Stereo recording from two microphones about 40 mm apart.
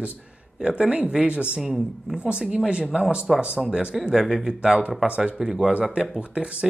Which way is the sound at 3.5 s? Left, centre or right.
Centre.